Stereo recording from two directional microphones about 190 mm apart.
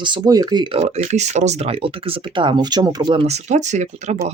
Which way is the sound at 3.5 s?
40° right (ahead or behind).